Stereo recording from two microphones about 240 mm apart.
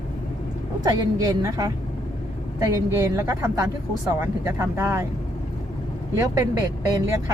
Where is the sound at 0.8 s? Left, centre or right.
Centre.